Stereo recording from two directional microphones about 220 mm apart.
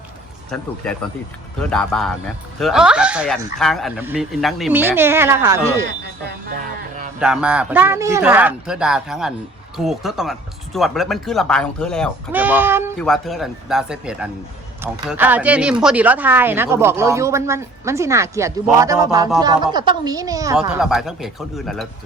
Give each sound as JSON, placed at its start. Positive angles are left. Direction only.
{"t": 1.5, "sound": "speech", "side_deg": 5}
{"t": 7.2, "sound": "speech", "side_deg": -5}
{"t": 12.3, "sound": "speech", "side_deg": -5}
{"t": 13.0, "sound": "speech", "side_deg": 0}
{"t": 20.6, "sound": "speech", "side_deg": 0}